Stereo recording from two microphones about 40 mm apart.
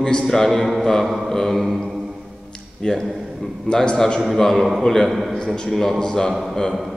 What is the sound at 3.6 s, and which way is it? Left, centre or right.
Speech, centre.